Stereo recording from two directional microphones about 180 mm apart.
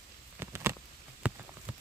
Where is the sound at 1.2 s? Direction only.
5° right (ahead or behind).